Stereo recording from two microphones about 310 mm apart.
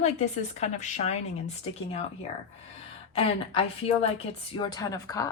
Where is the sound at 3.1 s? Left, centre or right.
Centre.